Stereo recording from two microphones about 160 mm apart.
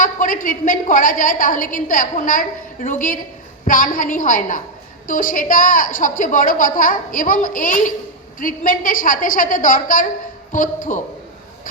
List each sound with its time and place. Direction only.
0.0 s a woman's voice: 60° left (ahead or behind)